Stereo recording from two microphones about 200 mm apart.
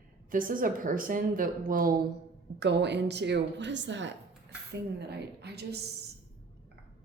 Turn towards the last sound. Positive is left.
turn(degrees=-55)  # may be behind; listen again after turning